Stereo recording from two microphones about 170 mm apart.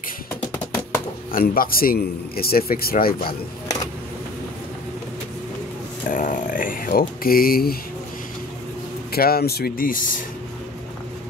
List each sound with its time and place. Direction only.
1.3 s speech: 60° left (ahead or behind)
6.0 s speech: 50° left (ahead or behind)
9.1 s speech: 65° left (ahead or behind)